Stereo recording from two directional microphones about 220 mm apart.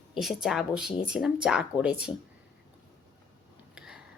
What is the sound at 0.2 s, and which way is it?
Speech, centre (ahead or behind).